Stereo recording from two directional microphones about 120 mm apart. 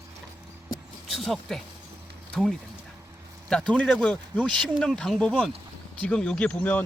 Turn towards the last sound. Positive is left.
turn(degrees=10)  # may be behind; listen again after turning